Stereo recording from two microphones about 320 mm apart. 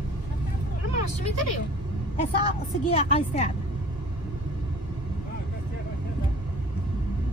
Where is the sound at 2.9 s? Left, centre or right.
Centre.